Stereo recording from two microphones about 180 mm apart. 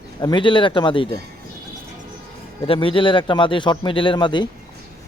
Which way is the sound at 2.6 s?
30° left (ahead or behind).